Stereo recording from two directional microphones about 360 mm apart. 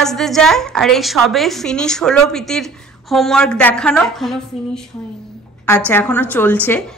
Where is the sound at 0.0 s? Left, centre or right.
Centre.